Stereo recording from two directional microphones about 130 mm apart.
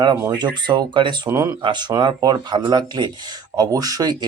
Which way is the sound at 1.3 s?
20° right (ahead or behind).